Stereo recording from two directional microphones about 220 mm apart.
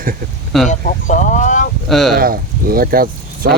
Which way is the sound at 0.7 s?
35° left (ahead or behind).